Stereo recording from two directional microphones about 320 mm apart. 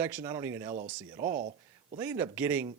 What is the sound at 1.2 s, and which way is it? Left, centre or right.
Speech, right.